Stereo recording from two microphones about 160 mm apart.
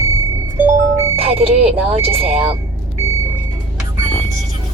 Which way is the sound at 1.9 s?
35° right (ahead or behind).